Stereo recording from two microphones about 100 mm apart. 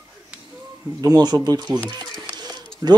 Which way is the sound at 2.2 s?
45° right (ahead or behind).